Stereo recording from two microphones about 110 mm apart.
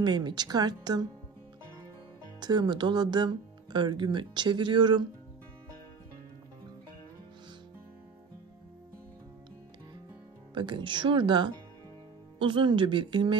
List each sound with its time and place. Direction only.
0.0 s a woman's voice: 40° right (ahead or behind)
2.4 s speech: 40° right (ahead or behind)
10.5 s speech: 45° right (ahead or behind)